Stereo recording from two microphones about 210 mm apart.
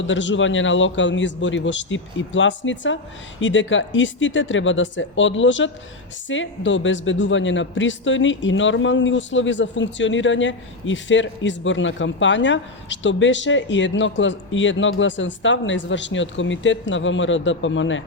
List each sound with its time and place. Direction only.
0.0 s a man's voice: 60° left (ahead or behind)